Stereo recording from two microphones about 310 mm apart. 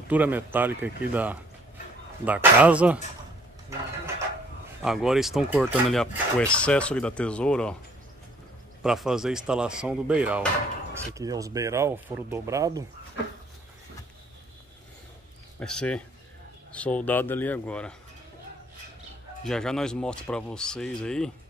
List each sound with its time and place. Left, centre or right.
0.1 s speech: centre
4.8 s speech: centre
8.8 s speech: centre
15.6 s speech: centre
19.4 s speech: centre